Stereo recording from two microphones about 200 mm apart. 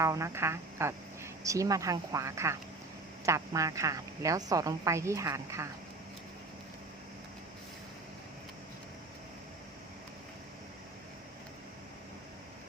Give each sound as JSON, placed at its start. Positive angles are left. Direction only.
{"t": 0.0, "sound": "a woman's voice", "side_deg": -15}